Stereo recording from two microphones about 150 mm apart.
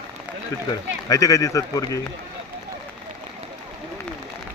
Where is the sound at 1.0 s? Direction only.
25° left (ahead or behind).